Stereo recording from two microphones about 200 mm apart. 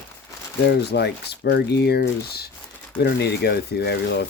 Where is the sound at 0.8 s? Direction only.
55° left (ahead or behind).